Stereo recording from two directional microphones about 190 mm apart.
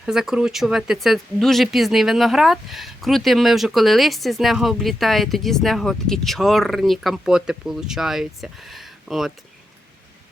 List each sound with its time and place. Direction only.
0.0 s speech: 5° right (ahead or behind)